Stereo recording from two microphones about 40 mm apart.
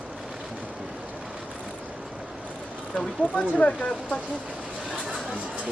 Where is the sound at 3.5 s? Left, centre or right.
Left.